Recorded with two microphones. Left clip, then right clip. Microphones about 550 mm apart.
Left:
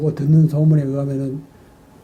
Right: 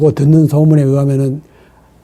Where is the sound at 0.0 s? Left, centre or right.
Right.